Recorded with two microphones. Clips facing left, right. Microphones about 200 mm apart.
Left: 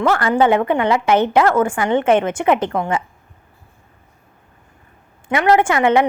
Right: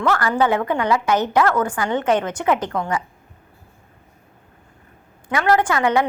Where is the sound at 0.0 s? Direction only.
25° left (ahead or behind).